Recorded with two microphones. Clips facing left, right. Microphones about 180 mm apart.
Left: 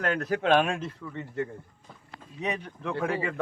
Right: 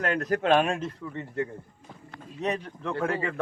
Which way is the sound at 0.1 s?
5° left (ahead or behind).